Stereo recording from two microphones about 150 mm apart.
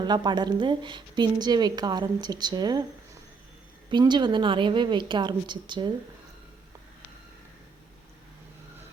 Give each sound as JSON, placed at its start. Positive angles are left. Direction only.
{"t": 0.0, "sound": "a woman's voice", "side_deg": -30}
{"t": 3.8, "sound": "a woman's voice", "side_deg": -30}